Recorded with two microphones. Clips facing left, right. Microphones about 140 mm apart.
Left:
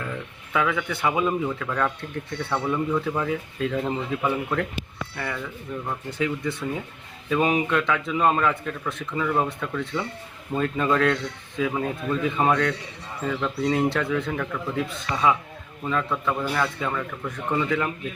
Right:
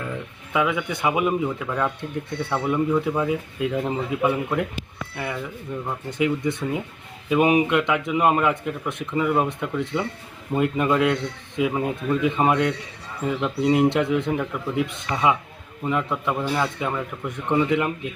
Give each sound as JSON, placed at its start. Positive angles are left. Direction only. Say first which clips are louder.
{"t": 0.5, "sound": "a man's voice", "louder": "right 2 dB", "side_deg": -15}